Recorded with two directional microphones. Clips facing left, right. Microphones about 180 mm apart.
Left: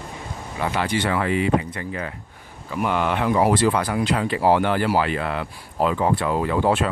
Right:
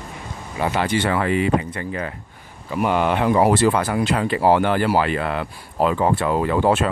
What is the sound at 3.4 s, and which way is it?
Speech, 50° right (ahead or behind).